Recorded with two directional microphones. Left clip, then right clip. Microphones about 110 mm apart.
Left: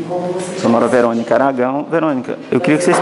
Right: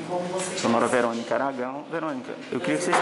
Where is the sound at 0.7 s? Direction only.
10° right (ahead or behind).